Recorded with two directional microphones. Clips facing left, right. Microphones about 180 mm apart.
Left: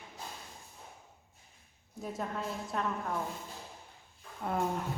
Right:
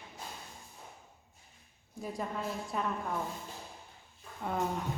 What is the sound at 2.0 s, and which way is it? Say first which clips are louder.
Speech: even; centre (ahead or behind).